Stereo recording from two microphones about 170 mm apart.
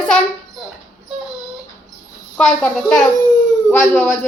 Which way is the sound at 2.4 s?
5° left (ahead or behind).